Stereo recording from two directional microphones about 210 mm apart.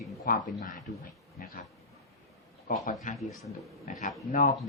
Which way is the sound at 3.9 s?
40° left (ahead or behind).